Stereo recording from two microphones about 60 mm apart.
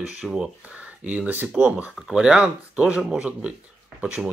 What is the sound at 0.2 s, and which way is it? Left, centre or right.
Speech, centre.